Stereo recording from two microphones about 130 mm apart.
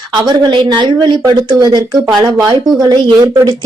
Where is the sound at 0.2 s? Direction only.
35° right (ahead or behind).